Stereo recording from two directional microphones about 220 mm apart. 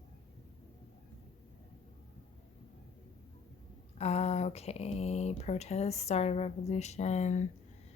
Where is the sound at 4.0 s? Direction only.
30° left (ahead or behind).